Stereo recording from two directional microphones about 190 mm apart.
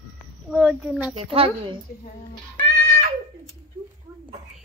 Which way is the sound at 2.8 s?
50° right (ahead or behind).